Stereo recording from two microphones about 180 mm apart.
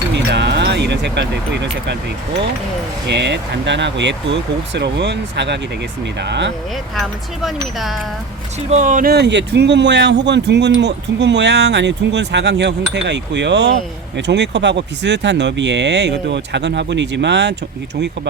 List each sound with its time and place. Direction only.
0.1 s music: 70° right (ahead or behind)
3.1 s speech: 75° right (ahead or behind)
6.9 s speech: centre (ahead or behind)
8.7 s speech: 45° right (ahead or behind)
9.1 s speech: 70° right (ahead or behind)